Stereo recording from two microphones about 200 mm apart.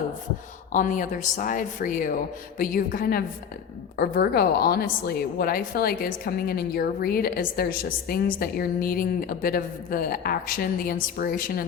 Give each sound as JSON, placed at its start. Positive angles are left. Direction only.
{"t": 0.7, "sound": "a woman's voice", "side_deg": 40}